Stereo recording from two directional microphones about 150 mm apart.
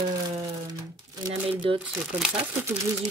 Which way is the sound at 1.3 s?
35° right (ahead or behind).